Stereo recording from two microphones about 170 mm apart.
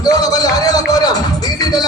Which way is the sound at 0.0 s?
20° left (ahead or behind).